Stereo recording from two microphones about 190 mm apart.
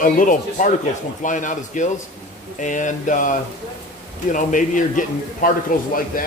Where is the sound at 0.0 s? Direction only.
45° left (ahead or behind).